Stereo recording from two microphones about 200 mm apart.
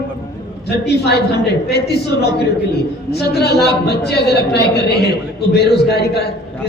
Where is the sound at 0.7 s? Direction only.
55° left (ahead or behind).